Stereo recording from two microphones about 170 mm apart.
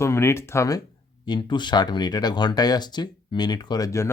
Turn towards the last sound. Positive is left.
turn(degrees=20)  # may be behind; listen again after turning